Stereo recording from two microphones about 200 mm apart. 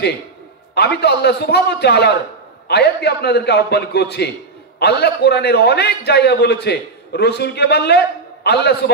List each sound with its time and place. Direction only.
0.7 s a man's voice: 55° left (ahead or behind)